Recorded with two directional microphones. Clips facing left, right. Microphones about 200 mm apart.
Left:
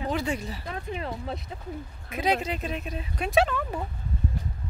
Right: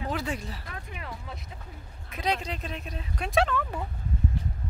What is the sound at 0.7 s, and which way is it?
Speech, 25° left (ahead or behind).